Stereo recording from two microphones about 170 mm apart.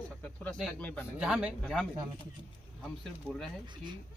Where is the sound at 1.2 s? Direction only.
5° right (ahead or behind).